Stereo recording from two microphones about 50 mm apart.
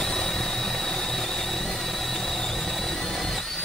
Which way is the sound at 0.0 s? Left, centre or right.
Centre.